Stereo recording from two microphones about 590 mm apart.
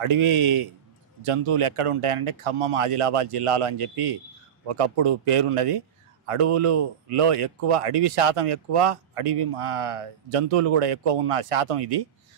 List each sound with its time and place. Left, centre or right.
0.0 s a man's voice: right